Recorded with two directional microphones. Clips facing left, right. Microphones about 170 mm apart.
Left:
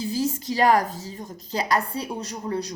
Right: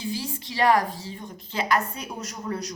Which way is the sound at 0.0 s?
40° left (ahead or behind).